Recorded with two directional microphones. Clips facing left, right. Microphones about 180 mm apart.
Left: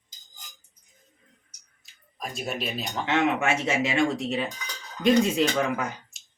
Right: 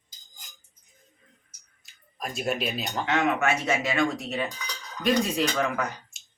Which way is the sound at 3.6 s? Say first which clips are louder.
Left 1 dB; 25° left (ahead or behind).